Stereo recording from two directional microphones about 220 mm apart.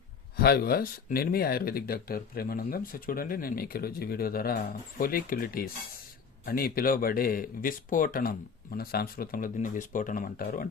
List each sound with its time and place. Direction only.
0.3 s speech: 45° left (ahead or behind)